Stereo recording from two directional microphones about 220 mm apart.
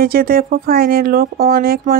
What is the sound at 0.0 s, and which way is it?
Speech, 40° right (ahead or behind).